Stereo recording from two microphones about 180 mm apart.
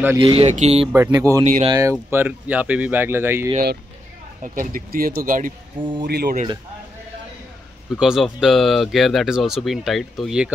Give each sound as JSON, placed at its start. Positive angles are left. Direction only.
{"t": 0.2, "sound": "speech", "side_deg": -30}
{"t": 0.9, "sound": "speech", "side_deg": -15}
{"t": 1.4, "sound": "speech", "side_deg": -40}
{"t": 1.7, "sound": "speech", "side_deg": -15}
{"t": 4.4, "sound": "speech", "side_deg": -50}
{"t": 5.8, "sound": "speech", "side_deg": -25}
{"t": 6.0, "sound": "speech", "side_deg": -60}
{"t": 7.9, "sound": "speech", "side_deg": 0}